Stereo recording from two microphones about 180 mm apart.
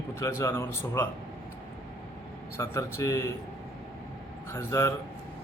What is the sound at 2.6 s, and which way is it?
Speech, 15° left (ahead or behind).